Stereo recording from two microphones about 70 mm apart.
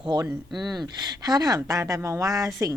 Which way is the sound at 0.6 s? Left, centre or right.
Centre.